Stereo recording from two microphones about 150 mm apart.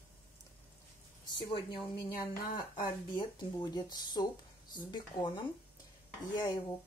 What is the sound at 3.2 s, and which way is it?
Speech, 30° left (ahead or behind).